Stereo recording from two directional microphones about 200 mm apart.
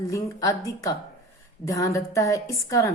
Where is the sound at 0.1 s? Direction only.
15° left (ahead or behind).